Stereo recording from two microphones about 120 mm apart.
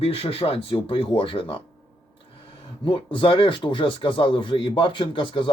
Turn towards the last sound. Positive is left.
turn(degrees=45)  # may be behind; listen again after turning